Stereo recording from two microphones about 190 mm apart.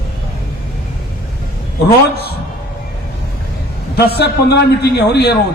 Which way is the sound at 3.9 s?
55° left (ahead or behind).